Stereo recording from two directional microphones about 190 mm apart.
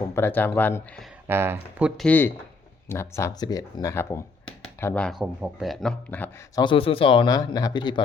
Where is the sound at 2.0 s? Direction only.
10° left (ahead or behind).